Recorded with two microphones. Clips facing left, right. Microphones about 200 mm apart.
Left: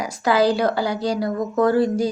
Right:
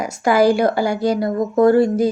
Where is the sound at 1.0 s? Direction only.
50° right (ahead or behind).